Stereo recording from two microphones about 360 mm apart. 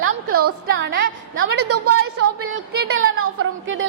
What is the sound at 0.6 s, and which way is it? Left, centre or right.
A woman's voice, right.